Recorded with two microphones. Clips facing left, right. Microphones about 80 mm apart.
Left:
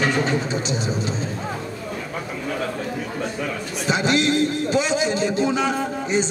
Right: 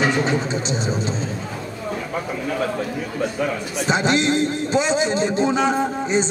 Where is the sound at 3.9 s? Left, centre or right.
Right.